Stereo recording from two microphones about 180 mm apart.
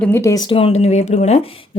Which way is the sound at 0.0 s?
15° left (ahead or behind).